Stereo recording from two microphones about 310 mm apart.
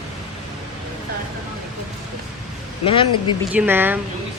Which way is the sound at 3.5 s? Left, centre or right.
Centre.